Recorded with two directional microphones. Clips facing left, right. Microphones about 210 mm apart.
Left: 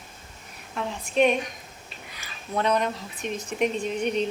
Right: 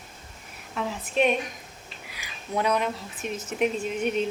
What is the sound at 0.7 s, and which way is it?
Speech, centre (ahead or behind).